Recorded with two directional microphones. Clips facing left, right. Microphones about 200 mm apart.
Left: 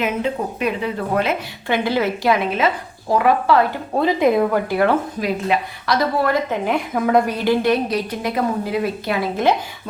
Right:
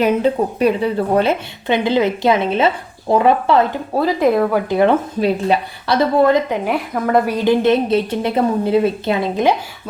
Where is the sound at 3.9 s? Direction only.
Centre (ahead or behind).